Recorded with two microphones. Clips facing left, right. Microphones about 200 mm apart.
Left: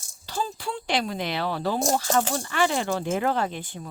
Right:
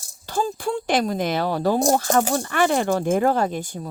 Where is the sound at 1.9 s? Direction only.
55° right (ahead or behind).